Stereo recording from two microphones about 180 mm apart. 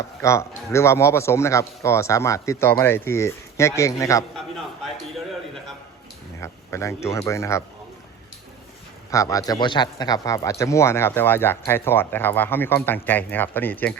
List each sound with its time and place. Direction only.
0.2 s speech: 15° left (ahead or behind)
6.4 s speech: 15° left (ahead or behind)
9.0 s a man's voice: 20° left (ahead or behind)